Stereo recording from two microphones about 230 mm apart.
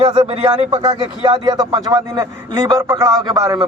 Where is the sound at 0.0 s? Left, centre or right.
Right.